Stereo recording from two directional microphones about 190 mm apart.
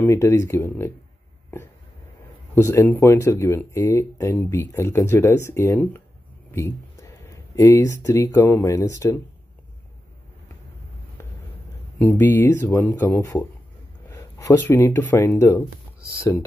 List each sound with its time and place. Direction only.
0.0 s speech: 15° left (ahead or behind)
2.5 s speech: 15° left (ahead or behind)
12.0 s speech: 10° left (ahead or behind)